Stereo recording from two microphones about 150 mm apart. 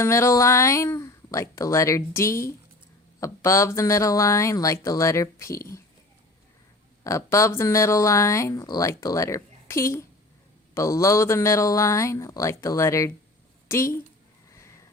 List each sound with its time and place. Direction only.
0.0 s speech: 20° left (ahead or behind)
7.0 s a woman's voice: 20° left (ahead or behind)